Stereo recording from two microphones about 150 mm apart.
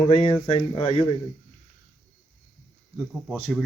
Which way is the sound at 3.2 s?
Centre (ahead or behind).